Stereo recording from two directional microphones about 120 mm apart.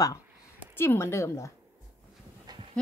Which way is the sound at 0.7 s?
20° left (ahead or behind).